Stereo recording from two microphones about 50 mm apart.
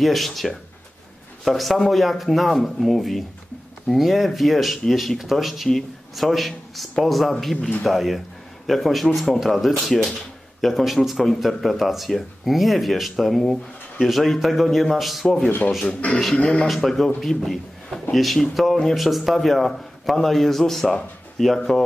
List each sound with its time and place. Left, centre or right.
0.0 s speech: centre
16.3 s speech: left
16.6 s a man's voice: centre